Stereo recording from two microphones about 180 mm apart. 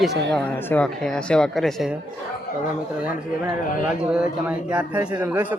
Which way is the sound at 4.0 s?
5° right (ahead or behind).